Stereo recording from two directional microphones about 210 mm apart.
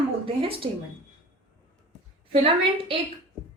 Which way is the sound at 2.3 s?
25° right (ahead or behind).